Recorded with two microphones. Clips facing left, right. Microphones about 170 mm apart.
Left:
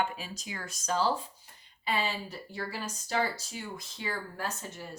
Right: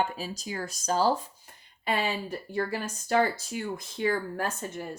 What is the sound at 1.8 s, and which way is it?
Speech, 55° right (ahead or behind).